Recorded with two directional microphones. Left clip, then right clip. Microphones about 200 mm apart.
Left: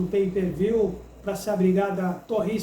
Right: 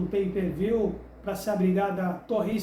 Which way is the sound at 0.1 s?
15° right (ahead or behind).